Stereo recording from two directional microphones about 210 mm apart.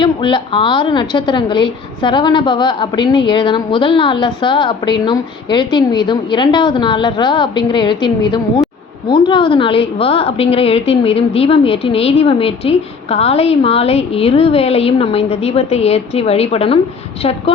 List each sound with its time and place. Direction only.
0.0 s a woman's voice: 25° left (ahead or behind)